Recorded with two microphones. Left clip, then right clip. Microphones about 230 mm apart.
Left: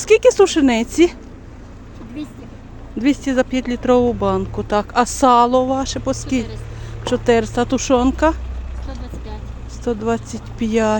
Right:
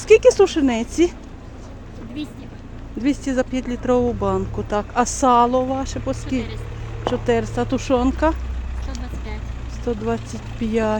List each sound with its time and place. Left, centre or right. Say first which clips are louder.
0.0 s speech: left 1 dB; centre
3.0 s speech: left 4 dB; centre
9.8 s speech: left 3 dB; centre